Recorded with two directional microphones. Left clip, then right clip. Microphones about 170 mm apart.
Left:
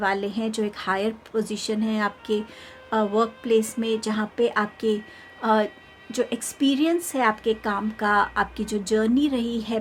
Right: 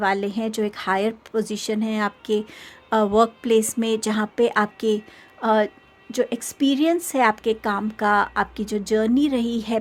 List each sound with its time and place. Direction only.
0.0 s a woman's voice: 35° right (ahead or behind)